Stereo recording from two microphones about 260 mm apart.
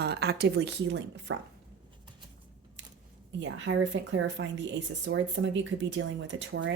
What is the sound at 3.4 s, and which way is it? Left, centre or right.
A woman's voice, right.